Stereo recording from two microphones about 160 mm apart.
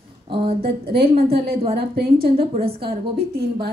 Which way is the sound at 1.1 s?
35° right (ahead or behind).